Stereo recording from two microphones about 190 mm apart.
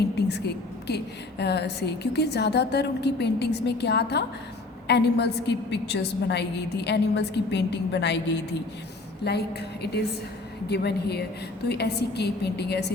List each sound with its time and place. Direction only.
0.2 s a woman's voice: 60° left (ahead or behind)
9.2 s a woman's voice: 60° left (ahead or behind)